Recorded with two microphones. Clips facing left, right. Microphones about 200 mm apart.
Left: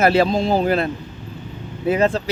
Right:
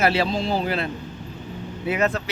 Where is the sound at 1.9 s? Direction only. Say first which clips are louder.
Left 5 dB; 30° left (ahead or behind).